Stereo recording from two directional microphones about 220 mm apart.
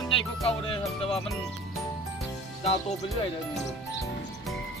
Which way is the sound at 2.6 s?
25° left (ahead or behind).